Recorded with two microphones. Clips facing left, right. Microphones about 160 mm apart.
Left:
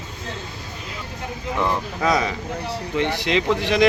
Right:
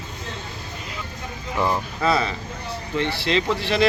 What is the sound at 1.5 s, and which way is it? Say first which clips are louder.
Speech: right 1 dB; 5° right (ahead or behind).